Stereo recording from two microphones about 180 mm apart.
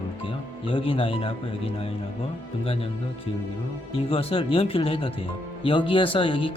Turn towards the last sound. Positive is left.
turn(degrees=30)  # may be behind; listen again after turning